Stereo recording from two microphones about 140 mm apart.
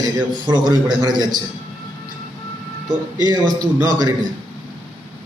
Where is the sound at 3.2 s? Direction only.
25° right (ahead or behind).